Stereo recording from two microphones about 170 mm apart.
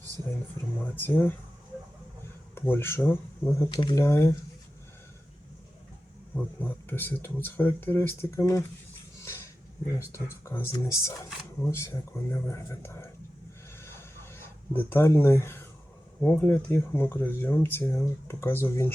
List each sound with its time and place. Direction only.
0.9 s speech: 10° left (ahead or behind)
2.6 s speech: 15° left (ahead or behind)
3.8 s speech: 30° left (ahead or behind)
4.0 s speech: 15° left (ahead or behind)
6.3 s speech: 10° left (ahead or behind)
9.2 s dog: 15° left (ahead or behind)
10.0 s speech: 15° left (ahead or behind)
13.7 s a sound: 15° left (ahead or behind)
16.2 s speech: 10° left (ahead or behind)